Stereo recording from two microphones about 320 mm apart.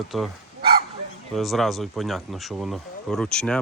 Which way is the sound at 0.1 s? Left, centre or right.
Centre.